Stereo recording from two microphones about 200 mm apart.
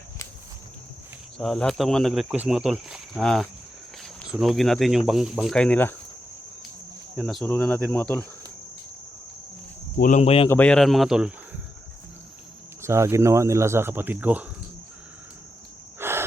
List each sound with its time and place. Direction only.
1.4 s speech: centre (ahead or behind)
7.2 s speech: centre (ahead or behind)
10.0 s speech: 35° left (ahead or behind)
10.5 s speech: 5° left (ahead or behind)
12.8 s speech: 15° right (ahead or behind)
16.0 s a sound: 10° right (ahead or behind)